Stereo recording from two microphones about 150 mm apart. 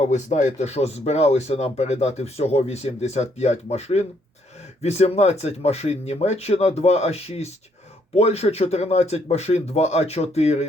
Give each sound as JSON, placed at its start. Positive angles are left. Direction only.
{"t": 0.1, "sound": "speech", "side_deg": 50}